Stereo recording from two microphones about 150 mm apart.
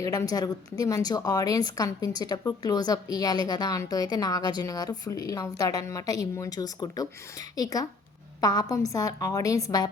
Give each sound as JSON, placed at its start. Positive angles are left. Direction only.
{"t": 0.0, "sound": "a woman's voice", "side_deg": 25}